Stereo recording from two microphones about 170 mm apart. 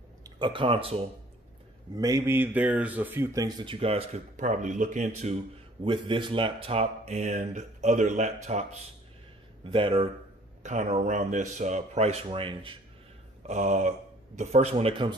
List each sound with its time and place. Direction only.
0.4 s speech: 30° right (ahead or behind)
2.0 s speech: 20° right (ahead or behind); by 5.4 s 40° right (ahead or behind)
5.9 s speech: 30° right (ahead or behind)
10.6 s speech: 45° right (ahead or behind)
13.4 s speech: 45° right (ahead or behind)